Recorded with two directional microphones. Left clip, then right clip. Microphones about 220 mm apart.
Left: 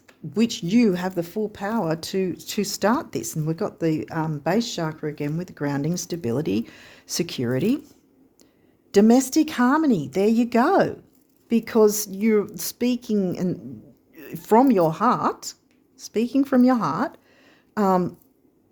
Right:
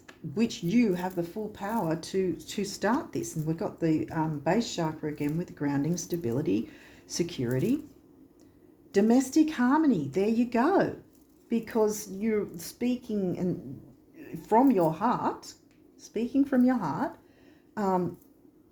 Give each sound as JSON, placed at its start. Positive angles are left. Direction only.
{"t": 0.3, "sound": "speech", "side_deg": 50}
{"t": 8.9, "sound": "speech", "side_deg": 50}